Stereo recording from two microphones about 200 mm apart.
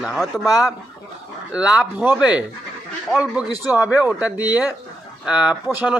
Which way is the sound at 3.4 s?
15° left (ahead or behind).